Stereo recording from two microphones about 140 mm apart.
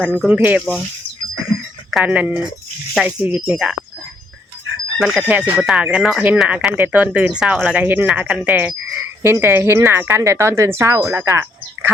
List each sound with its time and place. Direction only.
0.0 s speech: 10° left (ahead or behind)
0.3 s speech: 10° right (ahead or behind)
1.9 s speech: 5° right (ahead or behind)
4.9 s speech: centre (ahead or behind); by 11.9 s 15° right (ahead or behind)